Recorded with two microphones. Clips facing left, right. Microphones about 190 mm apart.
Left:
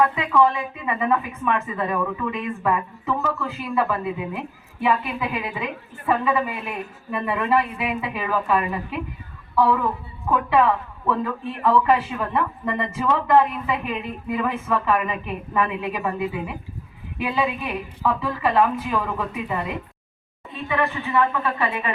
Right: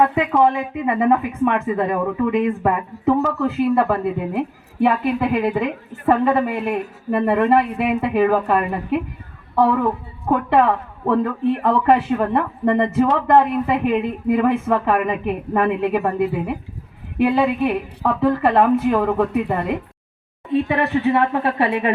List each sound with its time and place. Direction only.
0.4 s speech: 55° right (ahead or behind)
20.5 s speech: 65° right (ahead or behind)